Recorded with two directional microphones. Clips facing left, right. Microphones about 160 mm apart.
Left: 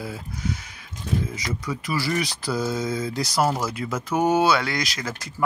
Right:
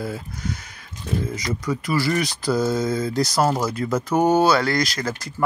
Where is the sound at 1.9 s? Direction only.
10° left (ahead or behind).